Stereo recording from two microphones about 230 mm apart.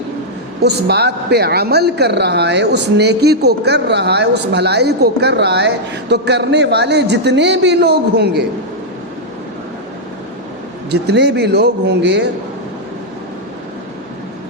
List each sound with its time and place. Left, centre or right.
0.6 s a woman's voice: right
10.9 s a woman's voice: right